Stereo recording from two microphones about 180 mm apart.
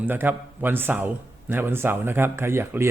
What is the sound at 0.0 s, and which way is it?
A man's voice, 10° right (ahead or behind).